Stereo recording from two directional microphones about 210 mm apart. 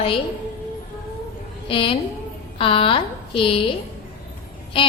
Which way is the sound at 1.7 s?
25° left (ahead or behind).